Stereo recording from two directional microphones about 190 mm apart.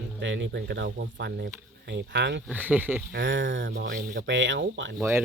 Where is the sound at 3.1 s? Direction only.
70° right (ahead or behind).